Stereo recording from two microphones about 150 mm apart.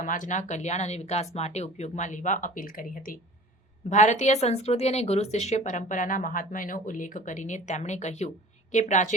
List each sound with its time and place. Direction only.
0.0 s a woman's voice: 60° left (ahead or behind)
3.8 s a woman's voice: 55° left (ahead or behind)